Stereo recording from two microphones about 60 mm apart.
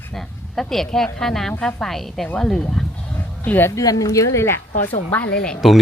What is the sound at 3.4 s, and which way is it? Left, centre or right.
Speech, left.